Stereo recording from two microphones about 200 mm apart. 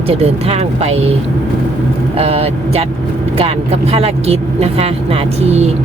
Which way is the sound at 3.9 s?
30° right (ahead or behind).